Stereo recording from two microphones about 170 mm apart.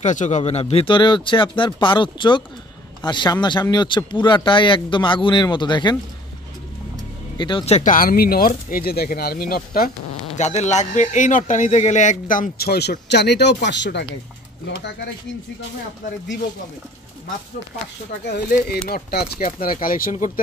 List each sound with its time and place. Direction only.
0.0 s speech: 45° left (ahead or behind); by 5.9 s 25° left (ahead or behind)
7.3 s speech: 30° left (ahead or behind); by 9.8 s 60° left (ahead or behind)
10.3 s a man's voice: 40° left (ahead or behind); by 12.9 s 70° left (ahead or behind)
13.1 s speech: 85° left
18.2 s speech: 70° left (ahead or behind); by 20.2 s 50° left (ahead or behind)